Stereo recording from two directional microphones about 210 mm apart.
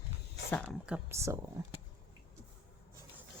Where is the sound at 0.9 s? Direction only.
10° right (ahead or behind).